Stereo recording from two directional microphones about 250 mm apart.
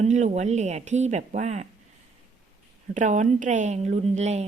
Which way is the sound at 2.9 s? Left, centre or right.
Right.